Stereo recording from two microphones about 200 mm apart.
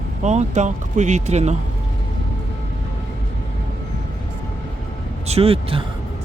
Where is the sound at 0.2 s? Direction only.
35° right (ahead or behind).